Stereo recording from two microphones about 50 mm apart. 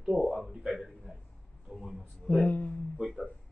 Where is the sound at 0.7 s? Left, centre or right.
Centre.